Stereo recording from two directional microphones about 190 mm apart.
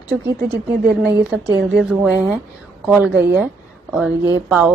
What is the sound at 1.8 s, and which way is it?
A woman's voice, 5° right (ahead or behind).